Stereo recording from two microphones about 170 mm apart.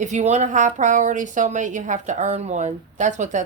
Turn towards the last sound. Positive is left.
turn(degrees=-45)  # may be behind; listen again after turning